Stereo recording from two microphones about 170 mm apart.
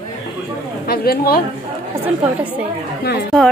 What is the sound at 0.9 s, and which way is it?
Speech, 65° left (ahead or behind).